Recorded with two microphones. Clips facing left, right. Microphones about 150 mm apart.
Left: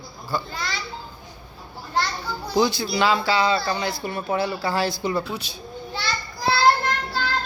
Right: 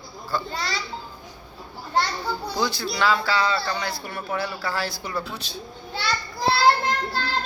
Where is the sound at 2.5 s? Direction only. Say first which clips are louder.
Left 8 dB; 20° left (ahead or behind).